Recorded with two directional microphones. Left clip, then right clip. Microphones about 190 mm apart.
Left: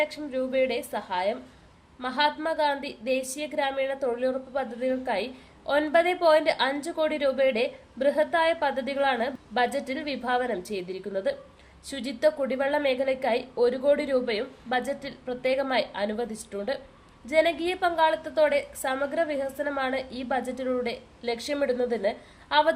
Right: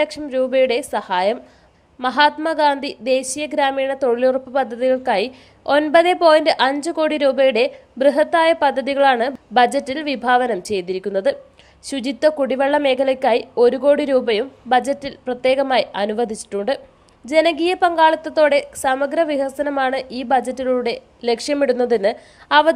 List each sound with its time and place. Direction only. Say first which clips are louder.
0.0 s a woman's voice: right 9 dB; 40° right (ahead or behind)